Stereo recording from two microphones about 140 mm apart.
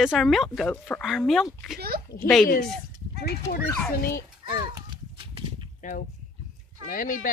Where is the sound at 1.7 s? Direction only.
90° right.